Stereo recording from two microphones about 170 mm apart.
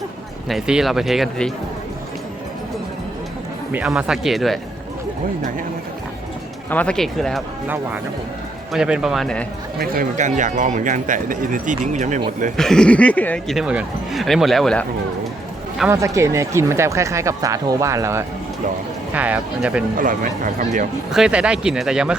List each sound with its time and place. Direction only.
0.4 s speech: centre (ahead or behind)
3.7 s speech: 5° right (ahead or behind)
6.7 s speech: 10° left (ahead or behind)
8.7 s speech: 5° right (ahead or behind)
9.7 s speech: 60° right (ahead or behind); by 12.2 s 45° right (ahead or behind)
12.5 s speech: 5° left (ahead or behind)
15.9 s speech: 20° right (ahead or behind)
20.0 s speech: 55° right (ahead or behind)
21.1 s speech: 5° right (ahead or behind)